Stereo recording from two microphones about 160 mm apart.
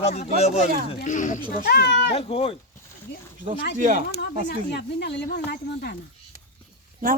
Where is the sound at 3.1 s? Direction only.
90° left.